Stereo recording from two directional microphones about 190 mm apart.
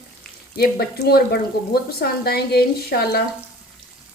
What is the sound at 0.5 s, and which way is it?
Speech, 55° left (ahead or behind).